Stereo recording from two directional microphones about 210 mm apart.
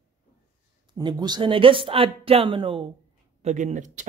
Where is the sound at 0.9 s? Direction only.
20° right (ahead or behind).